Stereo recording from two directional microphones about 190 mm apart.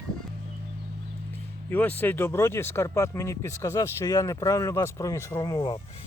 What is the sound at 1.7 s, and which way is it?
Speech, 10° left (ahead or behind).